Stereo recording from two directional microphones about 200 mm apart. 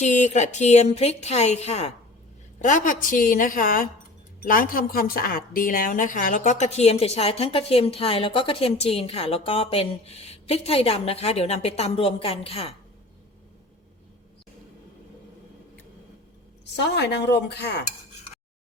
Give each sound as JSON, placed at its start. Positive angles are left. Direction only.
{"t": 0.0, "sound": "a woman's voice", "side_deg": 35}
{"t": 16.7, "sound": "speech", "side_deg": 55}